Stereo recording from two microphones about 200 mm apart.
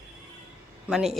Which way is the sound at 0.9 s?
Centre (ahead or behind).